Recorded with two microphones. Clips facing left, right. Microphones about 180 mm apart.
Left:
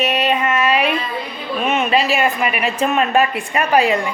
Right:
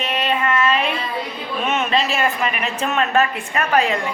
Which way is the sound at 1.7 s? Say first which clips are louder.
Left 3 dB; 10° left (ahead or behind).